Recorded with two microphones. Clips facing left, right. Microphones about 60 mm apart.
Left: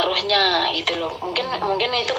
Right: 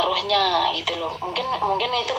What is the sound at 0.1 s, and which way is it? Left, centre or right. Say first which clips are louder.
Speech: left 1 dB; left.